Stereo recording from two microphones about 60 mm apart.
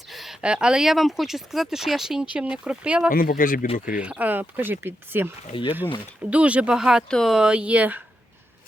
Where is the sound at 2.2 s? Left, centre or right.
Centre.